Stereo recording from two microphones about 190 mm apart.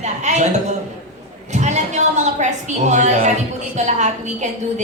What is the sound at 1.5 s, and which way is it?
A woman's voice, 40° right (ahead or behind).